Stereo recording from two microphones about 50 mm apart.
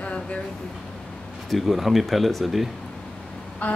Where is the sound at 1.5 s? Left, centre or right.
Centre.